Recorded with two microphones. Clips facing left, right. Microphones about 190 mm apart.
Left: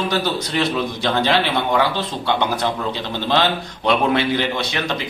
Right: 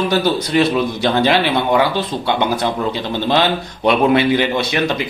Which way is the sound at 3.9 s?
10° right (ahead or behind).